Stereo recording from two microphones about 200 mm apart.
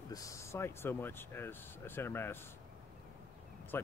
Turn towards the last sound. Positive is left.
turn(degrees=10)  # may be behind; listen again after turning